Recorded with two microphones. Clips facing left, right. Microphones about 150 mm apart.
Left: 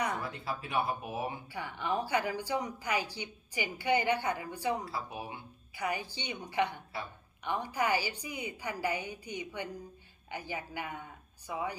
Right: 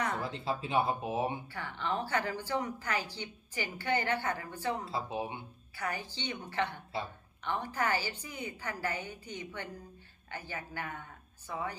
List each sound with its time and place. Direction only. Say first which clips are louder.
0.2 s speech: right 3 dB; 25° right (ahead or behind)
1.5 s speech: left 1 dB; 15° left (ahead or behind)
4.9 s speech: right 4 dB; 25° right (ahead or behind)
5.7 s speech: left 2 dB; 15° left (ahead or behind)